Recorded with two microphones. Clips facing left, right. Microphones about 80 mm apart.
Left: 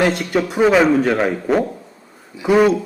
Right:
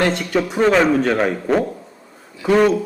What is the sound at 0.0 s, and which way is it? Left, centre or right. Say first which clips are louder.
A man's voice: left 1 dB; centre.